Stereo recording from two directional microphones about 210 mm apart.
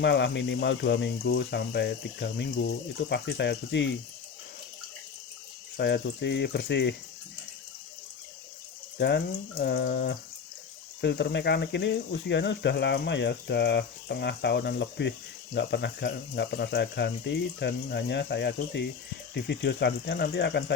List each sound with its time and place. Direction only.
0.0 s speech: 55° left (ahead or behind)
5.7 s speech: 55° left (ahead or behind)
9.0 s speech: 55° left (ahead or behind)